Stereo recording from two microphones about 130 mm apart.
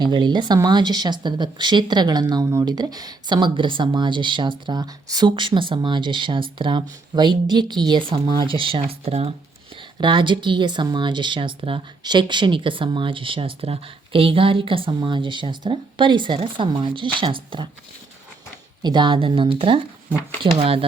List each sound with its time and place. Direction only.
0.0 s speech: 35° right (ahead or behind)
10.0 s speech: 35° right (ahead or behind)
18.8 s speech: 35° right (ahead or behind)